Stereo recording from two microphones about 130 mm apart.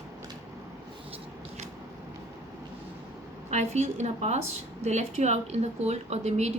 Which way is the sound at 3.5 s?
60° right (ahead or behind).